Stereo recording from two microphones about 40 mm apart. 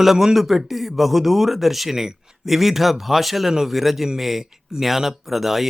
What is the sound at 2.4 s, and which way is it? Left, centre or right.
A man's voice, centre.